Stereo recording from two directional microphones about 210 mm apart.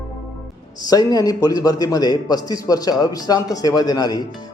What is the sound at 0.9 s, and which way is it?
A man's voice, 20° left (ahead or behind).